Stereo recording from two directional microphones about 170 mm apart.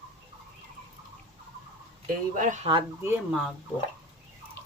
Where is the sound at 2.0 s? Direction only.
50° right (ahead or behind).